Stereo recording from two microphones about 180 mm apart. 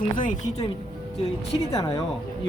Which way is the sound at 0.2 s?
45° left (ahead or behind).